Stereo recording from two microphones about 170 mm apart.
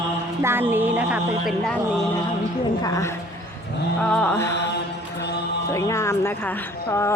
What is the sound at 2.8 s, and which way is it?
Speech, 20° left (ahead or behind).